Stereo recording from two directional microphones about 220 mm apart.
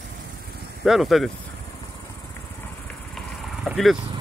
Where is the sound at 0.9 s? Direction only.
Centre (ahead or behind).